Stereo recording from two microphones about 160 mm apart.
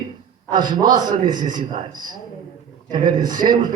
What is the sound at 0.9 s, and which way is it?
Speech, 25° right (ahead or behind).